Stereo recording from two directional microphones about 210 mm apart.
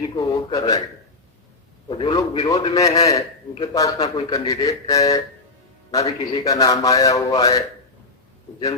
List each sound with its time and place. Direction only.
0.2 s speech: 15° left (ahead or behind)
1.9 s a man's voice: 20° left (ahead or behind)